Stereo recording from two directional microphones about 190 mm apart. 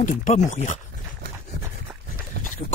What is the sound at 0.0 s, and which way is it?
Speech, 40° left (ahead or behind).